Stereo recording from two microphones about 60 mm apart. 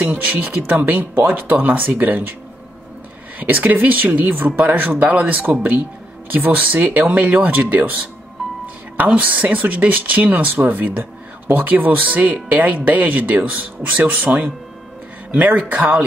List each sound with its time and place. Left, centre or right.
0.1 s speech: right
3.3 s speech: right
7.3 s speech: right
8.9 s speech: right